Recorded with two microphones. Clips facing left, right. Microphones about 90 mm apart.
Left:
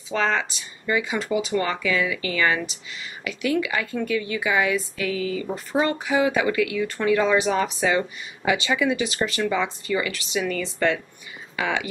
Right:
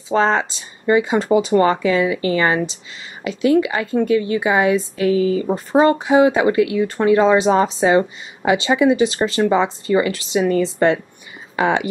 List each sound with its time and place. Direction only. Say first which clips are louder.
0.1 s a woman's voice: right 7 dB; 35° right (ahead or behind)